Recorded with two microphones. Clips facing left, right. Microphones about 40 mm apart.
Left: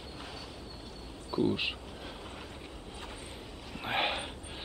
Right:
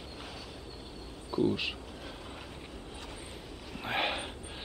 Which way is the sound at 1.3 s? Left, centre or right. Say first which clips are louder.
Even; centre.